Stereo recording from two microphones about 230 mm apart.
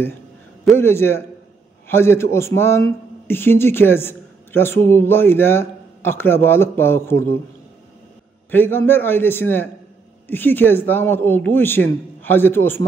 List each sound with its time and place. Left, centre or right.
0.7 s a man's voice: centre
8.5 s a man's voice: centre